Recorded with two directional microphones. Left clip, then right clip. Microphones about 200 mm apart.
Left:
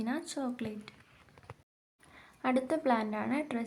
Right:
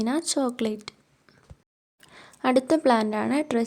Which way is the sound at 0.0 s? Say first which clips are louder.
Right 11 dB; 50° right (ahead or behind).